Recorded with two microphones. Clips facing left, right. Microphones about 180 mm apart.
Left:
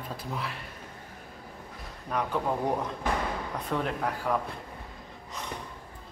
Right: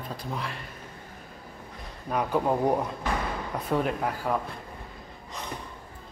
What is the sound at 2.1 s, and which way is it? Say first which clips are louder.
A man's voice: right 4 dB; 10° right (ahead or behind).